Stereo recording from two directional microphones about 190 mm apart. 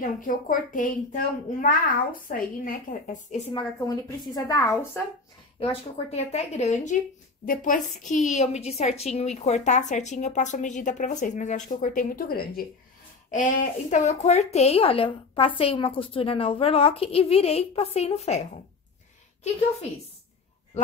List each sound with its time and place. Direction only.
0.0 s a woman's voice: 45° left (ahead or behind)
3.5 s a woman's voice: 20° left (ahead or behind)
5.6 s a woman's voice: 30° left (ahead or behind); by 12.6 s 50° left (ahead or behind)
13.3 s a woman's voice: 40° left (ahead or behind)